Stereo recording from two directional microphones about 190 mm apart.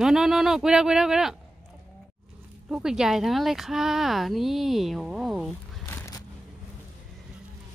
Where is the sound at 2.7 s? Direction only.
5° right (ahead or behind).